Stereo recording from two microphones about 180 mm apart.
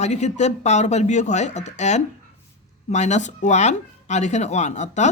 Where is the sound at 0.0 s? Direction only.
40° left (ahead or behind).